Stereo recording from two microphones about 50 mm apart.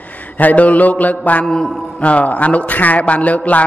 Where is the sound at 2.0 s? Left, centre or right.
Left.